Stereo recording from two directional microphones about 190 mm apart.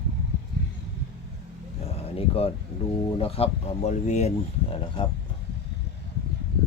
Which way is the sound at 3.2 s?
30° left (ahead or behind).